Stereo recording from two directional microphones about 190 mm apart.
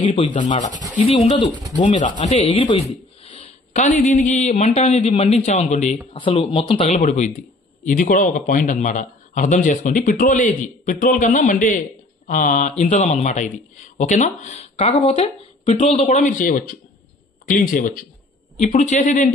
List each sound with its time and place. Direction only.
0.2 s speech: 40° left (ahead or behind)
1.0 s speech: 30° left (ahead or behind)
1.5 s speech: 20° right (ahead or behind)
2.0 s speech: 40° left (ahead or behind)
3.7 s speech: 40° left (ahead or behind)
6.1 s speech: 25° left (ahead or behind)
6.9 s speech: 40° left (ahead or behind)
18.6 s speech: 35° left (ahead or behind)